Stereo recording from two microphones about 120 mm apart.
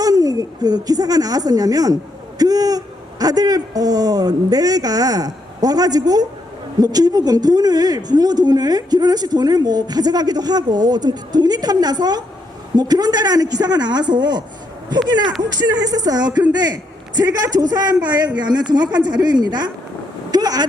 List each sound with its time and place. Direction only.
0.0 s a woman's voice: 30° right (ahead or behind)
20.3 s vehicle: 35° right (ahead or behind)